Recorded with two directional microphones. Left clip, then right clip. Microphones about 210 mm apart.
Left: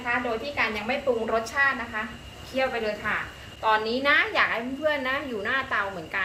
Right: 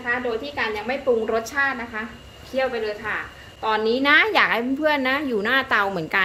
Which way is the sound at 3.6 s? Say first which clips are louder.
Right 3 dB; 40° right (ahead or behind).